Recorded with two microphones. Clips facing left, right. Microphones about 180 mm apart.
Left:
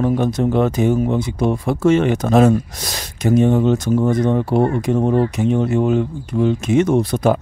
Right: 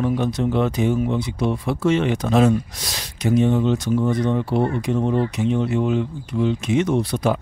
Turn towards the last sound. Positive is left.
turn(degrees=45)  # may be behind; listen again after turning